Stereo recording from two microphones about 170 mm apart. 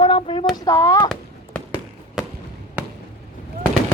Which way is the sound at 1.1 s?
5° left (ahead or behind).